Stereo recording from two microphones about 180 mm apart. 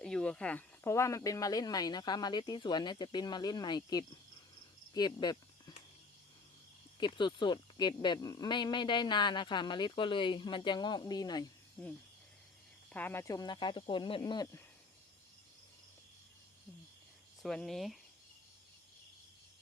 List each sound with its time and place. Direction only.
0.0 s speech: 5° left (ahead or behind); by 4.0 s 20° left (ahead or behind)
4.9 s a sound: 25° left (ahead or behind)
7.0 s speech: 25° left (ahead or behind)
12.9 s speech: 10° left (ahead or behind)
17.4 s speech: centre (ahead or behind)